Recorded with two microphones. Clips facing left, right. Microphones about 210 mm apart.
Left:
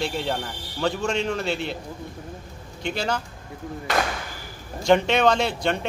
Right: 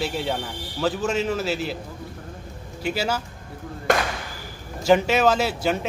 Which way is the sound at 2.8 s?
5° right (ahead or behind).